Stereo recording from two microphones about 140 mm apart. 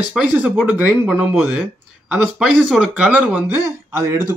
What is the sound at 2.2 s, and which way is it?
Speech, centre (ahead or behind).